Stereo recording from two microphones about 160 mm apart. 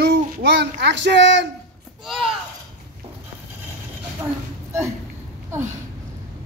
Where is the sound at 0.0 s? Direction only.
90° right.